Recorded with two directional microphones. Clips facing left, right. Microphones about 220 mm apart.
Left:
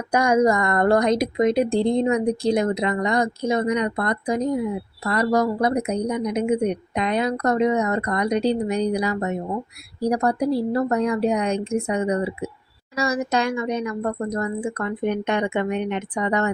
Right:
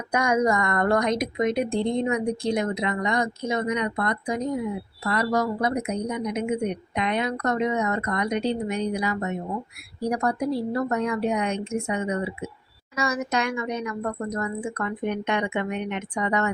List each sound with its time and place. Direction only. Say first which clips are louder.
0.1 s speech: left 4 dB; 30° left (ahead or behind)